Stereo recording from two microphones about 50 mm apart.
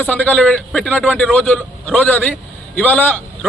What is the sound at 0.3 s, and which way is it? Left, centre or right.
A man's voice, left.